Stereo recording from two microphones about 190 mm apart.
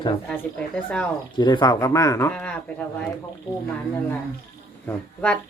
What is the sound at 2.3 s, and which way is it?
Speech, 5° left (ahead or behind).